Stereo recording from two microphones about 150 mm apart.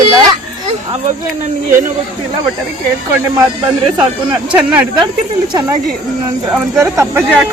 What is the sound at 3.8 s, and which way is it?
Speech, 30° right (ahead or behind).